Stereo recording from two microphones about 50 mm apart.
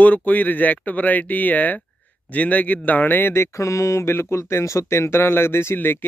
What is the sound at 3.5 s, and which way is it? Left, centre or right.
Speech, left.